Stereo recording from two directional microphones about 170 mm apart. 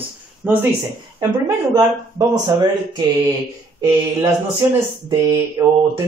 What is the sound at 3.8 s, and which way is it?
Speech, 15° right (ahead or behind).